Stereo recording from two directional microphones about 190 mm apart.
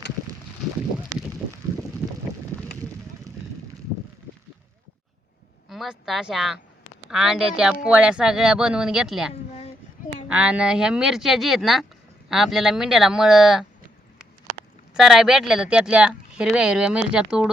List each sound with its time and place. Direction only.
5.6 s speech: centre (ahead or behind)
9.3 s a sound: 35° left (ahead or behind)
10.2 s speech: 5° right (ahead or behind)